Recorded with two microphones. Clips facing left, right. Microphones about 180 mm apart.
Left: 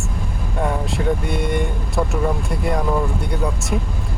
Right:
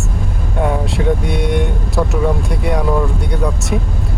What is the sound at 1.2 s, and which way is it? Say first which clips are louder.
Speech: right 4 dB; 70° right (ahead or behind).